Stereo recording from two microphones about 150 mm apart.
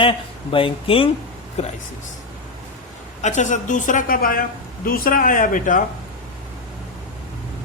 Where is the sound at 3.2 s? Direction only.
50° left (ahead or behind).